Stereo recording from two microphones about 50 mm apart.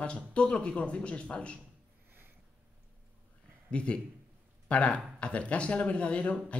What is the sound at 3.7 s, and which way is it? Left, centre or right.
Speech, left.